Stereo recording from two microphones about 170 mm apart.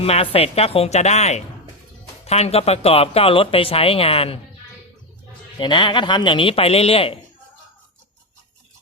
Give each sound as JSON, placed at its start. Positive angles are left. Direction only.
{"t": 0.0, "sound": "speech", "side_deg": 35}
{"t": 5.5, "sound": "speech", "side_deg": 30}